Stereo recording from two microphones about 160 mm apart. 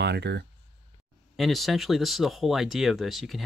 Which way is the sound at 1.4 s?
Centre (ahead or behind).